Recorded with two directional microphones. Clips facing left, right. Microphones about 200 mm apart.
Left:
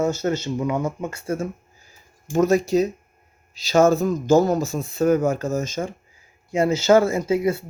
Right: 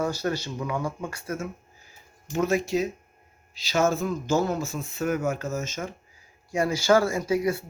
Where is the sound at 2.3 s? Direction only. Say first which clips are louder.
Left 6 dB; 40° left (ahead or behind).